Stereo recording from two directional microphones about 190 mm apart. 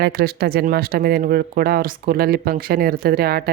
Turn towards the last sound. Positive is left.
turn(degrees=-55)  # may be behind; listen again after turning